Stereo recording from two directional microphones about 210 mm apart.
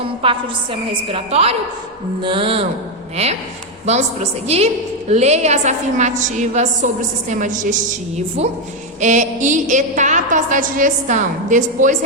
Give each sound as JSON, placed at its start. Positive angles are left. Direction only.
{"t": 0.0, "sound": "a woman's voice", "side_deg": -25}
{"t": 3.8, "sound": "a woman's voice", "side_deg": -30}